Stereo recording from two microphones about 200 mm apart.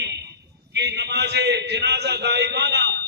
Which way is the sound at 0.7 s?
55° right (ahead or behind).